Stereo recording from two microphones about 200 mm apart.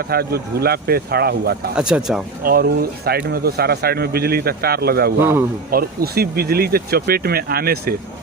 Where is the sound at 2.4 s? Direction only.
50° right (ahead or behind).